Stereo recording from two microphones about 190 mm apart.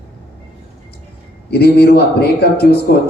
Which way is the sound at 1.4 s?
55° left (ahead or behind).